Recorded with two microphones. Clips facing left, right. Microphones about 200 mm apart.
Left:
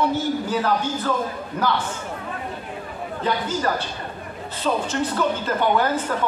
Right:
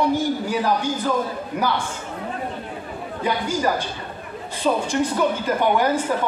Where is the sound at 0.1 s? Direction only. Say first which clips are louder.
Right 1 dB; 15° right (ahead or behind).